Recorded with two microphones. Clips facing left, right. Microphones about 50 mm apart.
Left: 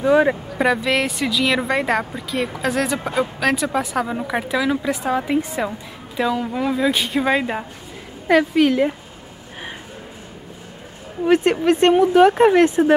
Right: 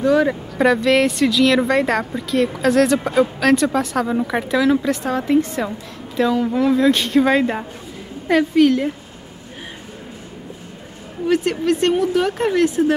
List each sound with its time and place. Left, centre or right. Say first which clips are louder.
0.0 s speech: left 1 dB; left
0.6 s a woman's voice: right 5 dB; centre
11.2 s speech: left 2 dB; left